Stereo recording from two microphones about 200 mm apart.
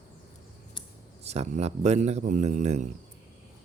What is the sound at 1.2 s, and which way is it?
A man's voice, 30° right (ahead or behind).